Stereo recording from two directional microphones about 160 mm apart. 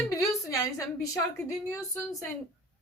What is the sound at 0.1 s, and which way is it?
A woman's voice, 20° left (ahead or behind).